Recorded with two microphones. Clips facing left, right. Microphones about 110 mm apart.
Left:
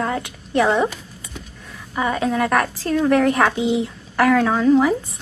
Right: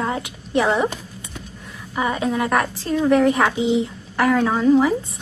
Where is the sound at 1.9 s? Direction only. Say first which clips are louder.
Left 1 dB; 10° right (ahead or behind).